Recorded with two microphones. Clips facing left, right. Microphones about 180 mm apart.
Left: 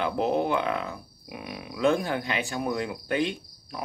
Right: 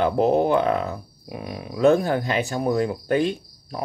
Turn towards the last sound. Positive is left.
turn(degrees=-40)  # may be behind; listen again after turning